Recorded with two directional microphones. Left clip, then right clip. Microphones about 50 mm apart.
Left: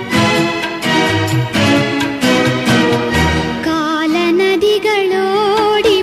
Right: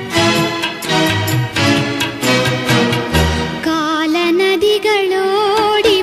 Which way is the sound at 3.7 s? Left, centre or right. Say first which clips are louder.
Even; left.